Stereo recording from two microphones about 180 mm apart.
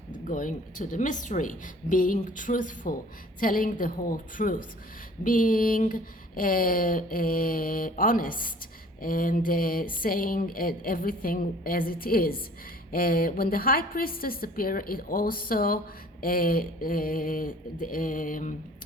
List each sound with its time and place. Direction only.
0.1 s speech: 45° left (ahead or behind)